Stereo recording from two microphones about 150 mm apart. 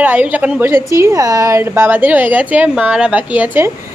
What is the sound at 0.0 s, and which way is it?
Speech, 10° right (ahead or behind).